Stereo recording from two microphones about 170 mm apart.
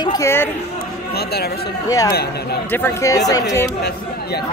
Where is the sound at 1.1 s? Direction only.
70° left (ahead or behind).